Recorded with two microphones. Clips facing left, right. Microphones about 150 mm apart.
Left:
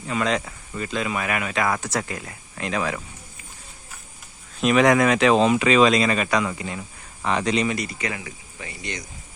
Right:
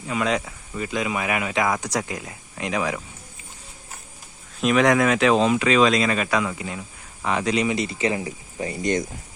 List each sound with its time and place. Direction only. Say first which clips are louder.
0.1 s speech: even; 5° right (ahead or behind)
4.6 s speech: left 1 dB; centre (ahead or behind)
7.8 s speech: right 6 dB; 25° right (ahead or behind); by 9.0 s 45° right (ahead or behind)